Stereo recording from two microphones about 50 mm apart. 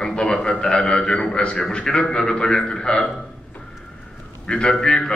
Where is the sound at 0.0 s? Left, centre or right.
Centre.